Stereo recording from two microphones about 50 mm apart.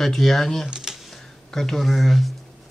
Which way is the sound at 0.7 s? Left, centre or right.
Centre.